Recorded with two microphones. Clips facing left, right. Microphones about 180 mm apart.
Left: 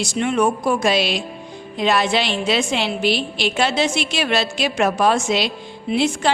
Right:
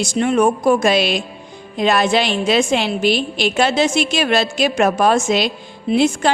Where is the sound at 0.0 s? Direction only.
45° right (ahead or behind).